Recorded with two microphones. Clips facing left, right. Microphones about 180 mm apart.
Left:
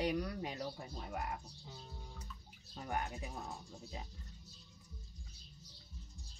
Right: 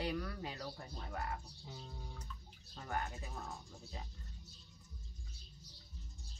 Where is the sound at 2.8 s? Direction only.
15° left (ahead or behind).